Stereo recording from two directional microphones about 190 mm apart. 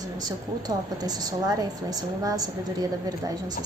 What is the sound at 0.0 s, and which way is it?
A woman's voice, 20° right (ahead or behind).